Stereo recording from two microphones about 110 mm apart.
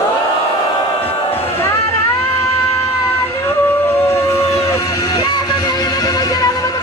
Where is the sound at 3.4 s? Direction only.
20° left (ahead or behind).